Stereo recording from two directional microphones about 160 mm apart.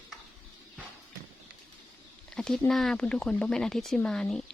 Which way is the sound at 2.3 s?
5° left (ahead or behind).